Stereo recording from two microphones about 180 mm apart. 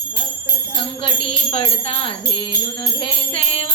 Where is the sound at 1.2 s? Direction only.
30° left (ahead or behind).